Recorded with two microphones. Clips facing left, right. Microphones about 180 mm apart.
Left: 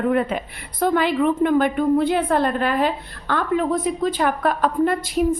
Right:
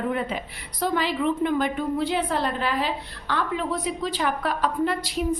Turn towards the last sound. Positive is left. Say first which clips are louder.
# left 5 dB
turn(degrees=50)  # may be behind; listen again after turning